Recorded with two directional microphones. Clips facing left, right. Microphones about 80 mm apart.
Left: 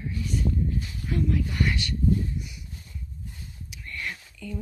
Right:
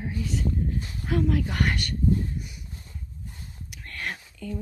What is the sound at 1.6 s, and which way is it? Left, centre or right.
Speech, right.